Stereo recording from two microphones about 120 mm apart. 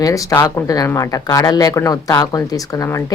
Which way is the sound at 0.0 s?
30° left (ahead or behind).